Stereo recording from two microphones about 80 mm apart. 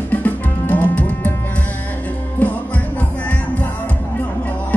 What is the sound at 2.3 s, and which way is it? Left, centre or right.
Music, centre.